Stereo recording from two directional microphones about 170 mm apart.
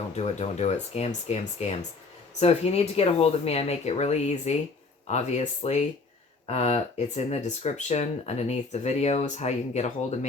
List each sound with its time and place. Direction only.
0.2 s speech: 40° left (ahead or behind)